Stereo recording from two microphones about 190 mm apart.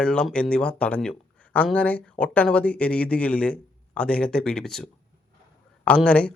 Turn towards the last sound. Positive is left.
turn(degrees=5)  # may be behind; listen again after turning